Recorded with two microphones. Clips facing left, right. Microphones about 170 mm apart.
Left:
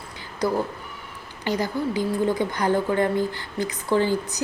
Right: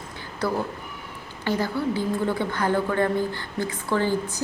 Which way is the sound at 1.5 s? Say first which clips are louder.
Even; 15° left (ahead or behind).